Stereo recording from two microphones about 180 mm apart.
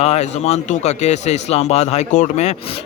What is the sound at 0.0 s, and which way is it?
Speech, 40° left (ahead or behind).